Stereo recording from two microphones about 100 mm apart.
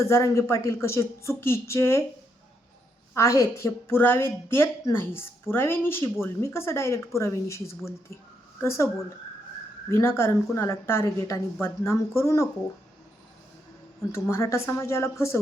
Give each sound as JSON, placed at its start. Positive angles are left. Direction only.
{"t": 0.0, "sound": "a woman's voice", "side_deg": 30}
{"t": 3.2, "sound": "a woman's voice", "side_deg": 30}
{"t": 9.9, "sound": "a woman's voice", "side_deg": 25}
{"t": 14.1, "sound": "a woman's voice", "side_deg": 25}